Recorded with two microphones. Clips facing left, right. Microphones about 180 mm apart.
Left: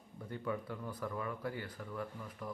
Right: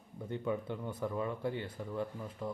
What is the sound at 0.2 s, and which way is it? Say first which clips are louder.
Speech: right 4 dB; 20° right (ahead or behind).